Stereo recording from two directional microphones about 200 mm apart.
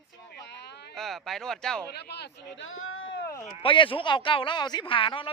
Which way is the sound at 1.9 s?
55° left (ahead or behind).